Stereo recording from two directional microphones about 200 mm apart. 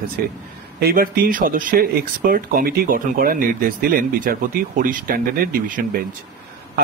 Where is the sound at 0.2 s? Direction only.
50° right (ahead or behind).